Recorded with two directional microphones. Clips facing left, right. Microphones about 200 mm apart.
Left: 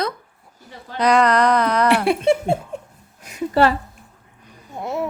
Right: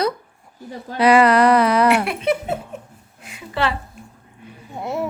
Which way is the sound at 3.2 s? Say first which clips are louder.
Left 6 dB; 40° left (ahead or behind).